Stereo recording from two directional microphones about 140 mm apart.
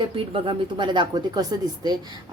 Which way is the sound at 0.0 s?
35° right (ahead or behind).